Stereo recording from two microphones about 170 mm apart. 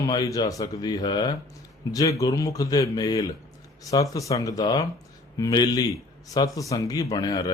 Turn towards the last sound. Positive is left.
turn(degrees=25)  # may be behind; listen again after turning